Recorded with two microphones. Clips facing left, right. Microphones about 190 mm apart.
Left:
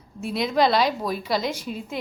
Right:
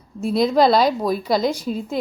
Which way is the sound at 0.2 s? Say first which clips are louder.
Right 5 dB; 35° right (ahead or behind).